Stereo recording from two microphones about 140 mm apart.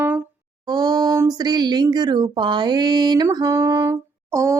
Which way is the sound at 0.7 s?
30° right (ahead or behind).